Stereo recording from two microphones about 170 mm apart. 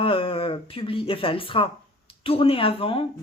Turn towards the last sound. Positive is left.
turn(degrees=35)  # may be behind; listen again after turning